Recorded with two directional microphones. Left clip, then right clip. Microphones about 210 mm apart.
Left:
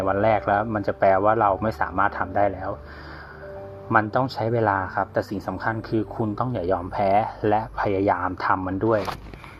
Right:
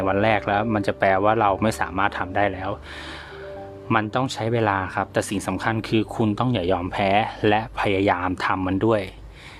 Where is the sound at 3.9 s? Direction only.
15° right (ahead or behind).